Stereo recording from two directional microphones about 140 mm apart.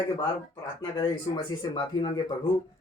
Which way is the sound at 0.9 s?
30° left (ahead or behind).